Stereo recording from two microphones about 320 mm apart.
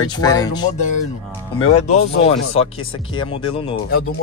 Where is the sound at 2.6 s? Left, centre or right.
Centre.